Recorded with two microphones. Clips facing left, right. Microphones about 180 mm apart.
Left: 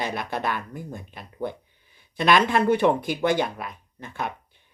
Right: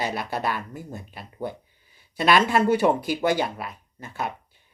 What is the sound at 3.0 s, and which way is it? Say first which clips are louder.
Speech: even; 55° left (ahead or behind).